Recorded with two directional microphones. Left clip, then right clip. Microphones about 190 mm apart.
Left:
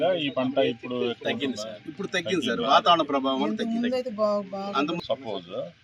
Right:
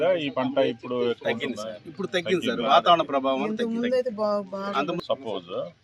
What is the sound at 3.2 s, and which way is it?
Speech, 45° right (ahead or behind).